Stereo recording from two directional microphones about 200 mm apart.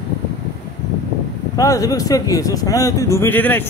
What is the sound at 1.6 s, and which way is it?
A man's voice, 15° left (ahead or behind).